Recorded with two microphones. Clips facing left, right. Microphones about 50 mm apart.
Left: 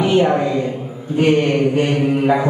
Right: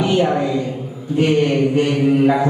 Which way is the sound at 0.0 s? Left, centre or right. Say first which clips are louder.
Left 2 dB; centre.